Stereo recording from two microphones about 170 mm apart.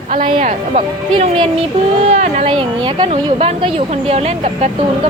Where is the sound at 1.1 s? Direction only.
30° right (ahead or behind).